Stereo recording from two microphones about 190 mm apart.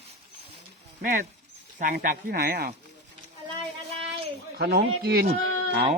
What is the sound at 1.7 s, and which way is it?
Speech, 45° right (ahead or behind).